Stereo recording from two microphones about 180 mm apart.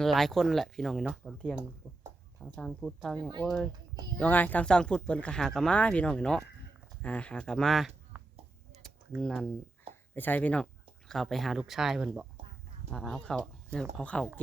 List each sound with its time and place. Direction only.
0.0 s speech: centre (ahead or behind)
1.8 s a sound: 5° left (ahead or behind)
2.6 s speech: centre (ahead or behind)
3.2 s speech: 25° right (ahead or behind)
3.4 s speech: centre (ahead or behind)
9.2 s speech: 5° left (ahead or behind)